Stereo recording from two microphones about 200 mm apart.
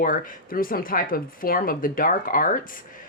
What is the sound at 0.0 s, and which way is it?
Speech, 45° left (ahead or behind).